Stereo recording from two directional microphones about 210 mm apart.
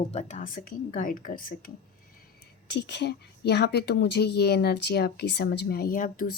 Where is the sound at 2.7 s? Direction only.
55° left (ahead or behind).